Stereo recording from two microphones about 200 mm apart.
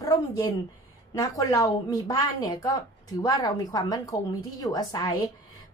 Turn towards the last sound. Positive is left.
turn(degrees=20)  # may be behind; listen again after turning